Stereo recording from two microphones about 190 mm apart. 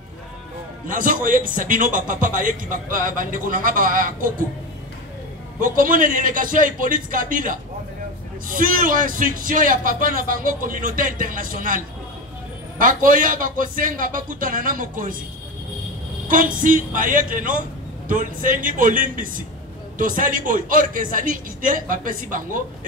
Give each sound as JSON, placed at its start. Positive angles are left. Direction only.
{"t": 0.8, "sound": "a man's voice", "side_deg": -45}
{"t": 5.6, "sound": "a man's voice", "side_deg": -45}
{"t": 16.3, "sound": "a man's voice", "side_deg": -45}